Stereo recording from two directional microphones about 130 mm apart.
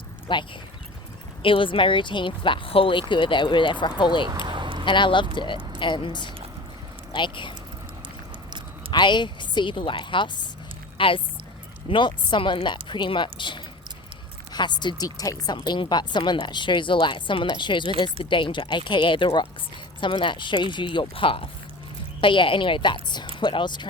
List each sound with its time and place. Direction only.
0.3 s speech: 40° left (ahead or behind)
4.4 s a sound: 40° right (ahead or behind)
4.9 s speech: 40° left (ahead or behind)
8.9 s speech: 35° left (ahead or behind)